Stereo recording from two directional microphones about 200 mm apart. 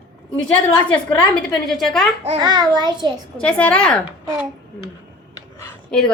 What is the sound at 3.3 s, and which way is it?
Speech, 5° left (ahead or behind).